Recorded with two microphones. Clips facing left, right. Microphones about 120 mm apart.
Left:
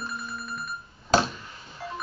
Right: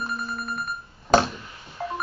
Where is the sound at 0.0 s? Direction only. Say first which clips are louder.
Right 5 dB; 45° right (ahead or behind).